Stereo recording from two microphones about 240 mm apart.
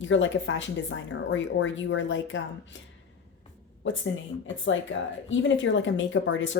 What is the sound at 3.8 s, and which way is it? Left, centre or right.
Speech, left.